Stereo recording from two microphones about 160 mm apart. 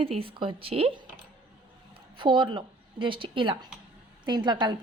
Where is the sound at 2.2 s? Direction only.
30° right (ahead or behind).